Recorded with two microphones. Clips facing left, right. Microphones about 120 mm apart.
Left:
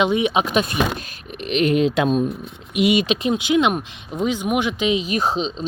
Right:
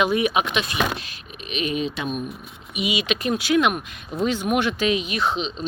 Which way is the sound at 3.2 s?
20° left (ahead or behind).